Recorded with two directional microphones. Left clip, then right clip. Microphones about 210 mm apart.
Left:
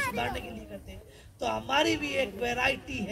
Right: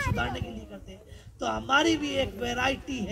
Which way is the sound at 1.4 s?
20° left (ahead or behind).